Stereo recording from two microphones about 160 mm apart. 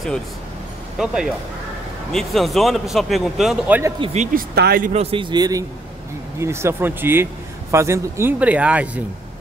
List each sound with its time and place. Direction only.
0.9 s speech: 5° right (ahead or behind)
4.0 s speech: 45° right (ahead or behind); by 4.9 s 70° right (ahead or behind)
4.9 s a man's voice: 35° right (ahead or behind); by 9.0 s 10° right (ahead or behind)